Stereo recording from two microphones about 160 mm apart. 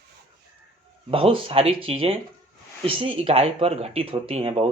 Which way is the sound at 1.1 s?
35° right (ahead or behind).